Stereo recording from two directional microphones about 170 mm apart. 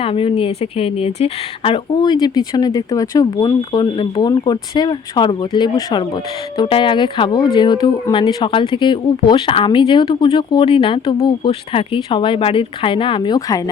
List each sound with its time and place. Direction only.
0.0 s speech: 35° left (ahead or behind)